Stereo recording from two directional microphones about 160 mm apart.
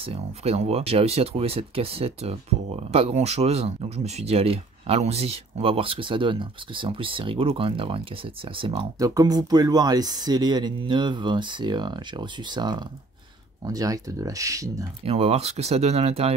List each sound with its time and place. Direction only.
0.0 s speech: 40° right (ahead or behind)
8.9 s speech: 20° right (ahead or behind)
15.0 s speech: 40° right (ahead or behind)